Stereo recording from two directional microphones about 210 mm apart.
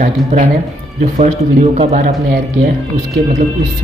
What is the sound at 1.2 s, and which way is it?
Speech, 30° right (ahead or behind).